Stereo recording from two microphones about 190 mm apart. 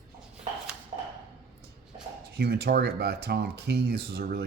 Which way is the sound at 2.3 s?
60° right (ahead or behind).